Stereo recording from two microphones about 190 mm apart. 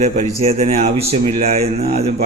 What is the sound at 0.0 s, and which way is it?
Speech, 35° right (ahead or behind).